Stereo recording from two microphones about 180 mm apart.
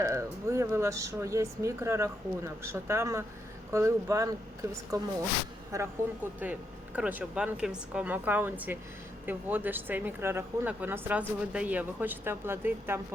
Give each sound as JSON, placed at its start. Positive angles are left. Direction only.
{"t": 0.0, "sound": "speech", "side_deg": -15}
{"t": 6.4, "sound": "speech", "side_deg": -10}